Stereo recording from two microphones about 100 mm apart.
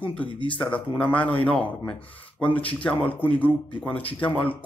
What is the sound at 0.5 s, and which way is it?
Speech, 15° left (ahead or behind).